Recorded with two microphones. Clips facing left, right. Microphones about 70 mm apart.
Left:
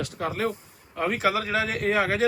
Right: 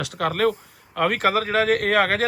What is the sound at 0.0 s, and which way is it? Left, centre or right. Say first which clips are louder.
Speech: right 6 dB; right.